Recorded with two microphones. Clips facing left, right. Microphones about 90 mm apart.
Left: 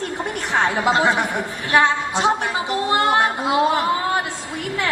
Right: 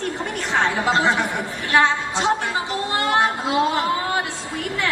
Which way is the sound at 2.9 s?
20° left (ahead or behind).